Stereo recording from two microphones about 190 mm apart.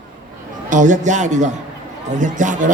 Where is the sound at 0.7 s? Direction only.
40° right (ahead or behind).